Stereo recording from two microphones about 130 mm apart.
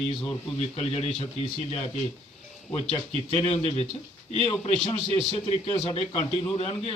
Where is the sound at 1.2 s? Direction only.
50° left (ahead or behind).